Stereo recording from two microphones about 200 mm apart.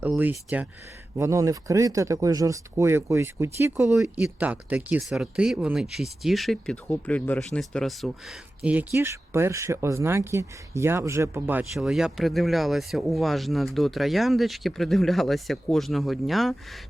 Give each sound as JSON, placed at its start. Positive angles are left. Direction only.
{"t": 0.0, "sound": "speech", "side_deg": -10}